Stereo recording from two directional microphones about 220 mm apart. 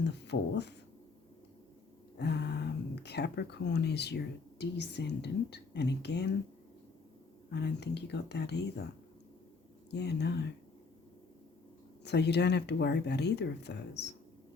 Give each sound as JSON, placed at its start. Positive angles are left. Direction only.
{"t": 0.0, "sound": "speech", "side_deg": 50}
{"t": 2.1, "sound": "a sound", "side_deg": 50}
{"t": 2.9, "sound": "speech", "side_deg": 50}
{"t": 7.5, "sound": "speech", "side_deg": 50}
{"t": 9.9, "sound": "speech", "side_deg": 50}
{"t": 12.0, "sound": "speech", "side_deg": 50}